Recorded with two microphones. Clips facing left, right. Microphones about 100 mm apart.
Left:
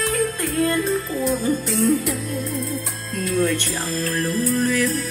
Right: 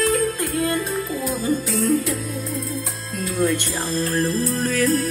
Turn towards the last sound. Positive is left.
turn(degrees=-40)  # may be behind; listen again after turning